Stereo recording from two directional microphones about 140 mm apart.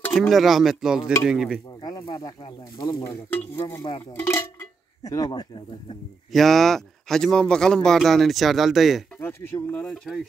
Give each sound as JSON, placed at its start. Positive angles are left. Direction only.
{"t": 0.0, "sound": "a sound", "side_deg": 10}
{"t": 0.3, "sound": "a man's voice", "side_deg": 0}
{"t": 1.8, "sound": "speech", "side_deg": 30}
{"t": 3.3, "sound": "speech", "side_deg": 15}
{"t": 6.3, "sound": "a man's voice", "side_deg": 0}
{"t": 9.2, "sound": "speech", "side_deg": 15}